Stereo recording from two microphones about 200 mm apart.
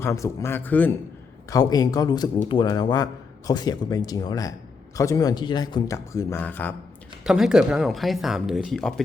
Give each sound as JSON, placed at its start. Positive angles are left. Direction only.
{"t": 0.0, "sound": "a man's voice", "side_deg": 15}
{"t": 7.3, "sound": "speech", "side_deg": -5}